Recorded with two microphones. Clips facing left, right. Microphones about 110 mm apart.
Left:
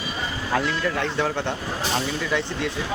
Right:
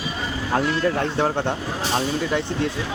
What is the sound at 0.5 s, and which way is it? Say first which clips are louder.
A man's voice: right 3 dB; 35° right (ahead or behind).